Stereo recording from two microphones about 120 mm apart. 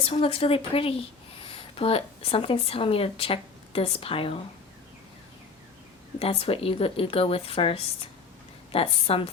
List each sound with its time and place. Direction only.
0.0 s speech: 55° left (ahead or behind)
6.1 s speech: 55° left (ahead or behind)